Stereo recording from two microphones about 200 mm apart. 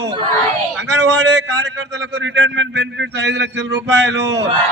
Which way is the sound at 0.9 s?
60° right (ahead or behind).